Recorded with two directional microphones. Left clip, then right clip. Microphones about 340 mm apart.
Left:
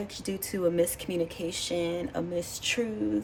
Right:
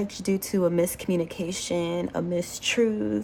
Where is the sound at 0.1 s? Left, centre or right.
Centre.